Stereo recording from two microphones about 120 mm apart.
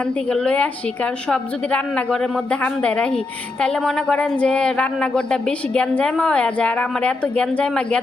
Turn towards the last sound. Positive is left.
turn(degrees=5)  # may be behind; listen again after turning